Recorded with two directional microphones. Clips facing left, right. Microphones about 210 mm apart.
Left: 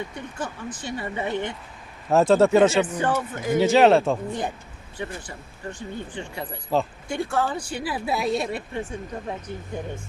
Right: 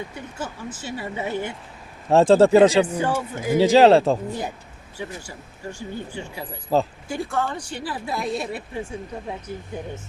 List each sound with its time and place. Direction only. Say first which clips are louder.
0.1 s speech: even; 5° right (ahead or behind)
2.0 s speech: right 3 dB; 30° right (ahead or behind)
3.0 s speech: even; 10° right (ahead or behind)
3.6 s speech: right 3 dB; 35° right (ahead or behind)
4.3 s speech: left 1 dB; 5° right (ahead or behind)
6.7 s speech: right 3 dB; 40° right (ahead or behind)
7.1 s speech: left 3 dB; centre (ahead or behind)